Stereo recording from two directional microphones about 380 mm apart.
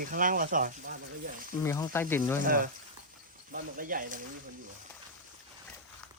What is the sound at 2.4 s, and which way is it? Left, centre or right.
Speech, right.